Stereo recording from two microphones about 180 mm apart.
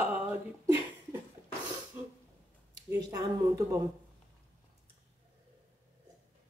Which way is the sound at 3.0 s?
20° right (ahead or behind).